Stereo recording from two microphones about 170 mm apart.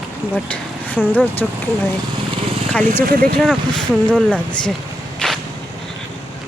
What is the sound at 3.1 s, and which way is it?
Speech, 60° right (ahead or behind).